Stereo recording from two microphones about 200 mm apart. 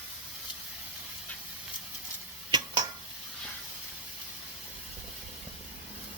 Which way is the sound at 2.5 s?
20° right (ahead or behind).